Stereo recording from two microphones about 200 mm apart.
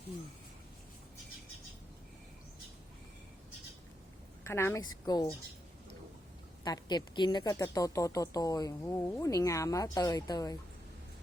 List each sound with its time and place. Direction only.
4.4 s a woman's voice: 15° left (ahead or behind)
6.7 s speech: 20° left (ahead or behind)